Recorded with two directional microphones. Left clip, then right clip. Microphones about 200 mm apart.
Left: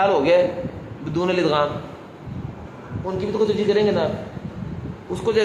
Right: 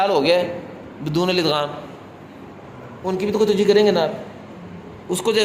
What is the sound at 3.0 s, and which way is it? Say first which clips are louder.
A man's voice: right 3 dB; 45° right (ahead or behind).